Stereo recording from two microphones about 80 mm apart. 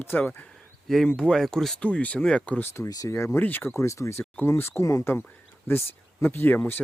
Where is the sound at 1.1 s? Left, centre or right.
Centre.